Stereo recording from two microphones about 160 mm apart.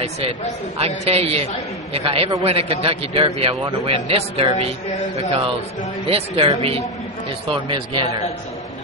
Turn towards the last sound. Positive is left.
turn(degrees=-30)  # may be behind; listen again after turning